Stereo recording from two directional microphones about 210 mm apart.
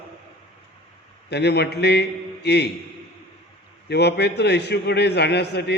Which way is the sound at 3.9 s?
50° left (ahead or behind).